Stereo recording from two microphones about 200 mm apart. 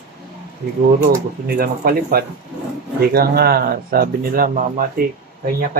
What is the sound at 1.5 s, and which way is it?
Speech, 50° right (ahead or behind).